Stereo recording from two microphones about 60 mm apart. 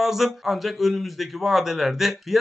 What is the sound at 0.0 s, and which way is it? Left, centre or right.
Speech, centre.